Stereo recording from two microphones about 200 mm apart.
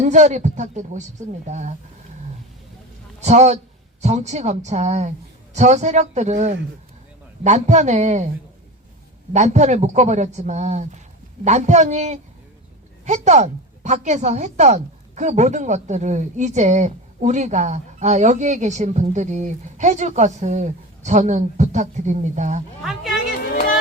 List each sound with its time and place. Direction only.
0.0 s speech: 35° right (ahead or behind)
3.2 s a man's voice: 35° right (ahead or behind)
9.3 s speech: 35° right (ahead or behind)
22.8 s speech: centre (ahead or behind)